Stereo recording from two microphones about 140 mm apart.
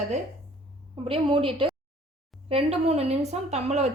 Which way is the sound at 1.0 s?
40° right (ahead or behind).